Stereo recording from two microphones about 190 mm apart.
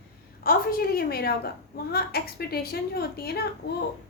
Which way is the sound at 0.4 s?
50° left (ahead or behind).